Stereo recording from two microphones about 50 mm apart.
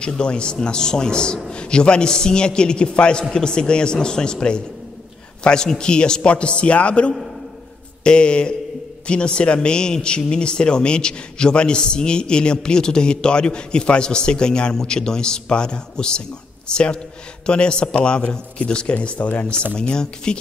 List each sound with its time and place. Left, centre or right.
0.0 s a man's voice: centre
19.5 s speech: right
19.8 s a man's voice: centre